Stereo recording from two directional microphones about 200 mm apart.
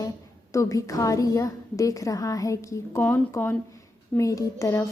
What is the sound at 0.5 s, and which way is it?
A woman's voice, 15° left (ahead or behind).